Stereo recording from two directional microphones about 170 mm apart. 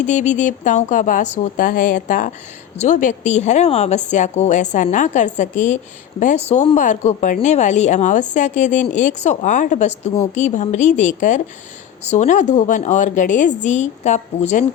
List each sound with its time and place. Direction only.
0.0 s a woman's voice: 45° left (ahead or behind)